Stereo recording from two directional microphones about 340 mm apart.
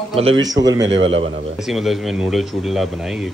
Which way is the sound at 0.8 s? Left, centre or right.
Right.